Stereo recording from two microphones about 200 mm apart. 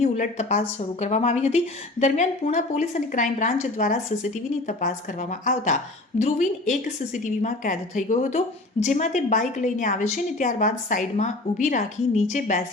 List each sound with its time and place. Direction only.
0.0 s a woman's voice: 35° left (ahead or behind)